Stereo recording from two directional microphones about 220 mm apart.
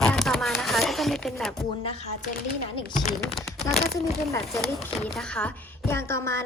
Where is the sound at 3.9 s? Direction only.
15° left (ahead or behind).